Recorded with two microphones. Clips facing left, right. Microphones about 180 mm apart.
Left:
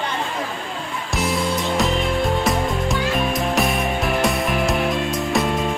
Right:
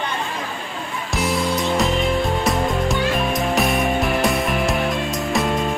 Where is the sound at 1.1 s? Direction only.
Centre (ahead or behind).